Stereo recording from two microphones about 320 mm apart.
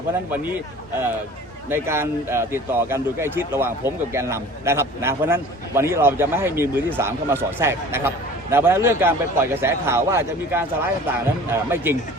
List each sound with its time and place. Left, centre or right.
1.7 s speech: centre